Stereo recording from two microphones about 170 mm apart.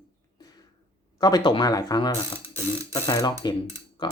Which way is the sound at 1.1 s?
20° left (ahead or behind).